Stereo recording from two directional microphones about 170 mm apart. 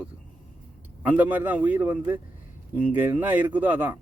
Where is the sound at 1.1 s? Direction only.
10° right (ahead or behind).